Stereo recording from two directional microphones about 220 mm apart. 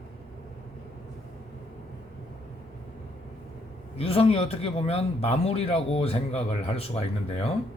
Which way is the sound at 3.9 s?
25° left (ahead or behind).